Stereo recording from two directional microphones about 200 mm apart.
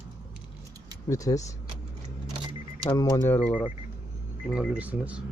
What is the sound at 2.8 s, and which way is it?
Speech, 15° left (ahead or behind).